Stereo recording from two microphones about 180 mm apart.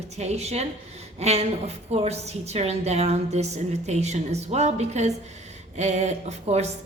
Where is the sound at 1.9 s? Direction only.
35° right (ahead or behind).